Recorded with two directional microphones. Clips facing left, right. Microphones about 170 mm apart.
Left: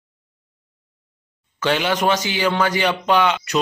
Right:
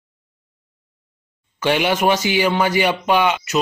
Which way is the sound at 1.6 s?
15° right (ahead or behind).